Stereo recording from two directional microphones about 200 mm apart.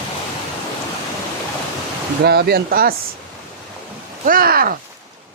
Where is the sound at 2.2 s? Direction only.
50° right (ahead or behind).